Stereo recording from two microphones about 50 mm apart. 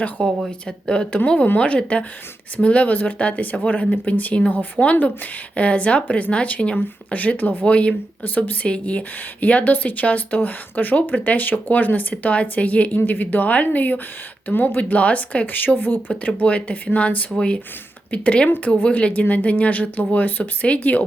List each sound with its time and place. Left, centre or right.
0.2 s speech: left
15.5 s speech: left
16.2 s speech: left
18.4 s speech: left
18.7 s speech: left